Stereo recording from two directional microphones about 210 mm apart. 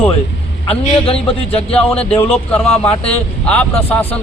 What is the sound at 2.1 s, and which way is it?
Speech, 10° left (ahead or behind).